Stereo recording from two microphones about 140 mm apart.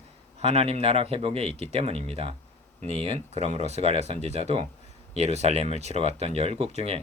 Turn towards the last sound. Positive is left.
turn(degrees=-50)  # may be behind; listen again after turning